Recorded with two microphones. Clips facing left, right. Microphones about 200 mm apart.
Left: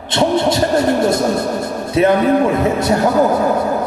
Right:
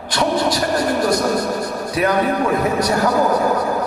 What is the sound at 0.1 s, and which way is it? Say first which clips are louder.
Vehicle: left 4 dB; 25° left (ahead or behind).